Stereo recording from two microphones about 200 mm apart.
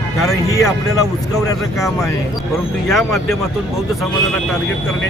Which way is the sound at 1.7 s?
Centre (ahead or behind).